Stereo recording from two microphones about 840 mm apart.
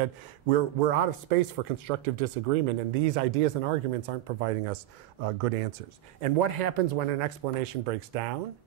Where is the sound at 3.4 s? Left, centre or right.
Right.